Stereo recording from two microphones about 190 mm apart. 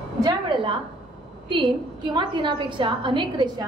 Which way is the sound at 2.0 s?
25° right (ahead or behind).